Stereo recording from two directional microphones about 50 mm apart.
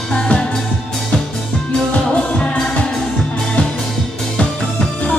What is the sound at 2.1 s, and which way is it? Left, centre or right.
Music, left.